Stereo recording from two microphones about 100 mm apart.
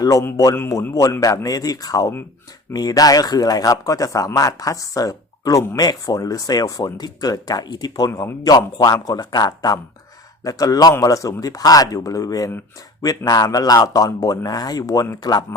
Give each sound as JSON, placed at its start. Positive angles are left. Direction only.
{"t": 0.0, "sound": "a man's voice", "side_deg": 35}